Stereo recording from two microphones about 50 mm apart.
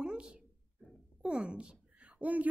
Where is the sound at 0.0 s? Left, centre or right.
Centre.